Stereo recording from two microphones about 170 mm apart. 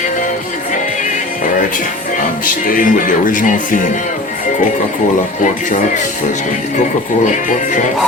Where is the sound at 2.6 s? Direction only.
55° left (ahead or behind).